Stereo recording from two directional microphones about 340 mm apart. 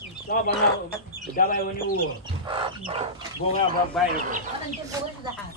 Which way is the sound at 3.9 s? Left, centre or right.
Centre.